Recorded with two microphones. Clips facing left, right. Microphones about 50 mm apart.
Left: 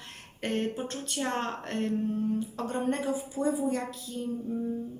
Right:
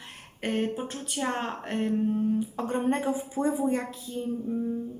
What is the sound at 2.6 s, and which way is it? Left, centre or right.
Speech, right.